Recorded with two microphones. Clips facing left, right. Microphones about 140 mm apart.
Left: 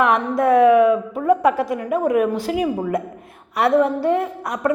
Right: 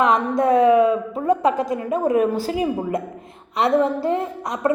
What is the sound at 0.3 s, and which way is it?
A woman's voice, 25° right (ahead or behind).